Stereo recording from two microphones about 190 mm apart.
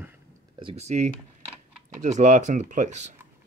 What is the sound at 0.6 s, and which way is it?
Speech, 30° right (ahead or behind).